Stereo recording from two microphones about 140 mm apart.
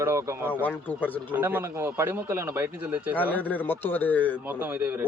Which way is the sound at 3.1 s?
10° left (ahead or behind).